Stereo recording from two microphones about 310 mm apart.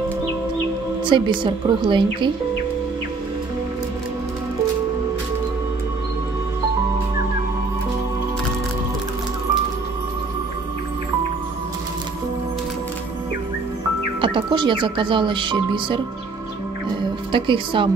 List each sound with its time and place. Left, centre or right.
1.0 s speech: centre
14.2 s speech: centre
17.3 s speech: centre